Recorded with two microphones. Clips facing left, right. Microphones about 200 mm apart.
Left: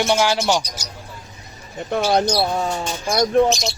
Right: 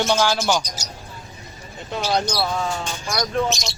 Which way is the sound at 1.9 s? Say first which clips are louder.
Left 5 dB; 55° left (ahead or behind).